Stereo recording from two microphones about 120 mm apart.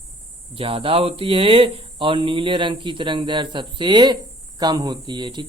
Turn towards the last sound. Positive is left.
turn(degrees=-40)  # may be behind; listen again after turning